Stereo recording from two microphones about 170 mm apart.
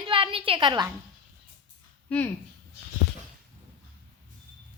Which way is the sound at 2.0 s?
10° left (ahead or behind).